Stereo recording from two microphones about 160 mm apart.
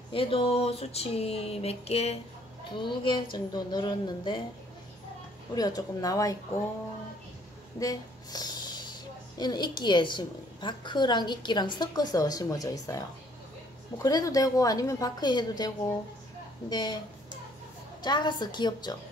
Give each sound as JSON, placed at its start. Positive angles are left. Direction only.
{"t": 0.1, "sound": "a sound", "side_deg": 35}
{"t": 2.7, "sound": "a woman's voice", "side_deg": 30}
{"t": 5.5, "sound": "a woman's voice", "side_deg": 25}
{"t": 7.8, "sound": "a woman's voice", "side_deg": 25}
{"t": 18.0, "sound": "a woman's voice", "side_deg": 25}